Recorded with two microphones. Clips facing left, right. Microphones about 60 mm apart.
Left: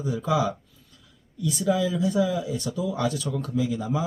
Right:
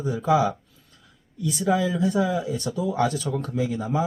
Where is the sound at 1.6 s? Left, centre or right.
Right.